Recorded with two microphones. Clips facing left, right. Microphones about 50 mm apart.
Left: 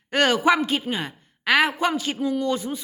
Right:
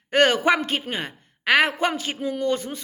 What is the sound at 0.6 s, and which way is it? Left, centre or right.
A woman's voice, right.